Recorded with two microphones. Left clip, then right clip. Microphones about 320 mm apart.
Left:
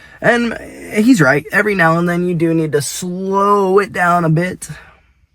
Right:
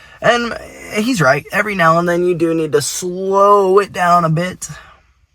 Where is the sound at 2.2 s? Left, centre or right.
Centre.